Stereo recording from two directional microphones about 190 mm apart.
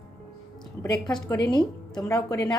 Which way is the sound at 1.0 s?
20° left (ahead or behind).